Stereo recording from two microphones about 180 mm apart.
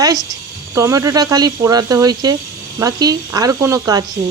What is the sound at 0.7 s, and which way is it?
Speech, 15° right (ahead or behind).